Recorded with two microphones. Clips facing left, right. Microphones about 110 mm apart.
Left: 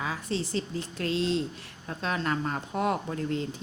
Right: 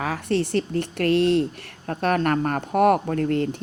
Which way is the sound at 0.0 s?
65° right (ahead or behind).